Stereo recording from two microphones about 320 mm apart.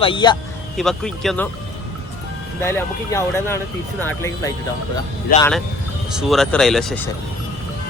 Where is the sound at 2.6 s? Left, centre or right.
Centre.